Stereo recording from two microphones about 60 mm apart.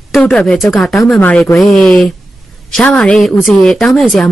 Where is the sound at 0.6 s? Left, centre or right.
Centre.